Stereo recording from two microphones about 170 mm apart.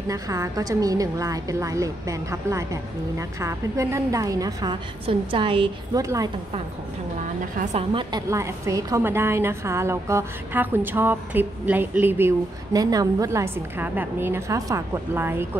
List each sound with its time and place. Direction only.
0.1 s a woman's voice: 20° right (ahead or behind)
5.0 s a woman's voice: 30° right (ahead or behind)
5.9 s a woman's voice: 20° right (ahead or behind)
7.9 s a woman's voice: 30° right (ahead or behind)
8.3 s a woman's voice: 20° right (ahead or behind)